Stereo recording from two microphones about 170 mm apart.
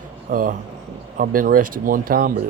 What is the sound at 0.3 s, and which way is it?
Speech, 55° right (ahead or behind).